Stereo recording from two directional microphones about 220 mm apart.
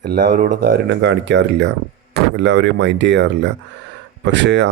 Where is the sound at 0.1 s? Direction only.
40° right (ahead or behind).